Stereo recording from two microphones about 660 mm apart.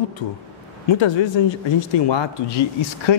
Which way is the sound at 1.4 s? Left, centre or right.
Left.